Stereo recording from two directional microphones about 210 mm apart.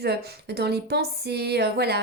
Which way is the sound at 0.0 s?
50° right (ahead or behind).